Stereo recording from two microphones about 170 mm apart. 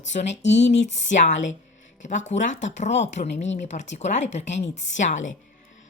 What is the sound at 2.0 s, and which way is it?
A woman's voice, 45° left (ahead or behind).